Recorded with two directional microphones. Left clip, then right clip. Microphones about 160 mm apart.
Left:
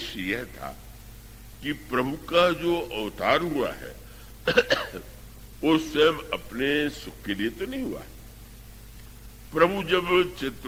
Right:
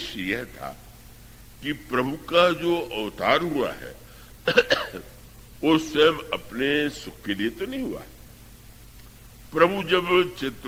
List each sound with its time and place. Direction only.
0.0 s a man's voice: 35° left (ahead or behind)
4.4 s cough: 30° left (ahead or behind)
5.6 s a man's voice: 35° left (ahead or behind)
9.5 s a man's voice: 35° left (ahead or behind)